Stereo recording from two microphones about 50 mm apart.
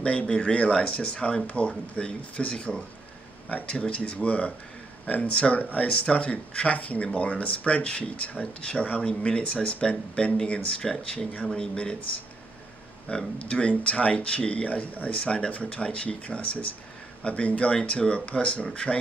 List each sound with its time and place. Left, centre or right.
0.0 s speech: left
10.8 s speech: centre
11.4 s speech: centre
13.4 s speech: left